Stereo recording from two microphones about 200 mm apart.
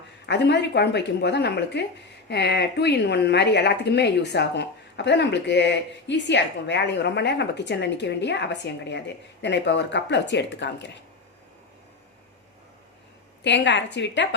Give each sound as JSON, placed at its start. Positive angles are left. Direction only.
{"t": 0.3, "sound": "a woman's voice", "side_deg": 60}
{"t": 13.4, "sound": "a woman's voice", "side_deg": 65}